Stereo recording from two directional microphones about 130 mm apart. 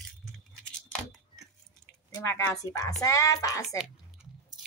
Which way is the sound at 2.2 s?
20° left (ahead or behind).